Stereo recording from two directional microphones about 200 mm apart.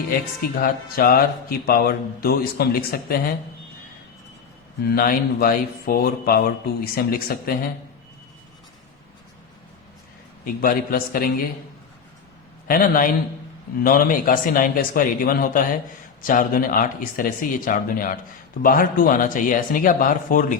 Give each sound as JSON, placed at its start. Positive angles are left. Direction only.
{"t": 0.6, "sound": "speech", "side_deg": 45}
{"t": 4.9, "sound": "speech", "side_deg": 50}
{"t": 10.4, "sound": "speech", "side_deg": 45}
{"t": 12.6, "sound": "speech", "side_deg": 45}